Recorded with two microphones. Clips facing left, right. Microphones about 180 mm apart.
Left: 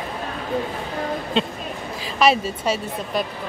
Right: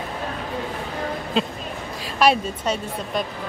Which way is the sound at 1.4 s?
Centre (ahead or behind).